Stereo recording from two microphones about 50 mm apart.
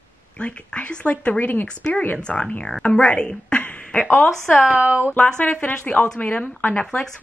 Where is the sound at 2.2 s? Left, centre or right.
Centre.